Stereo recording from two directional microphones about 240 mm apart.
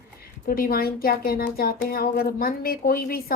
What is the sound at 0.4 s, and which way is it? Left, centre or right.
Speech, left.